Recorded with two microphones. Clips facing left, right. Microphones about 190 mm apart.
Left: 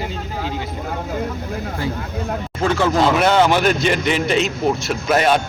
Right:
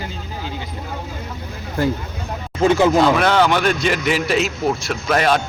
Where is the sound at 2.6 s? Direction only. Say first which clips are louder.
Right 4 dB; 20° right (ahead or behind).